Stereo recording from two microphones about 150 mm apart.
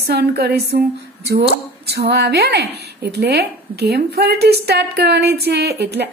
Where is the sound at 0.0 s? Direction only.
90° right.